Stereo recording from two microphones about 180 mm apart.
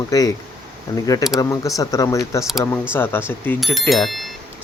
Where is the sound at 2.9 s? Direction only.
10° left (ahead or behind).